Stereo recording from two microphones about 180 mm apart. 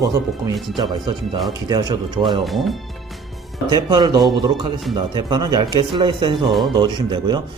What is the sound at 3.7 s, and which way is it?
Speech, 25° right (ahead or behind).